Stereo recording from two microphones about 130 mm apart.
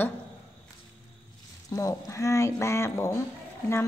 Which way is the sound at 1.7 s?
25° left (ahead or behind).